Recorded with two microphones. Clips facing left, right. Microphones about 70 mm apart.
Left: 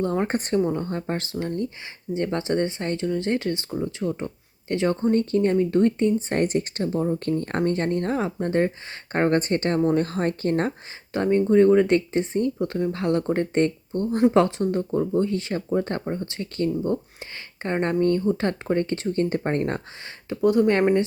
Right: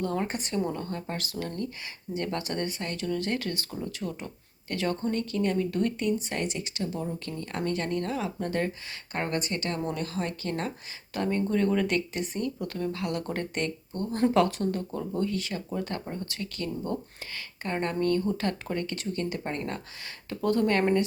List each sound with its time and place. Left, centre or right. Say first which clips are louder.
0.0 s speech: left 6 dB; left
0.6 s speech: left 7 dB; left
11.1 s speech: left 8 dB; left
20.3 s speech: left 6 dB; centre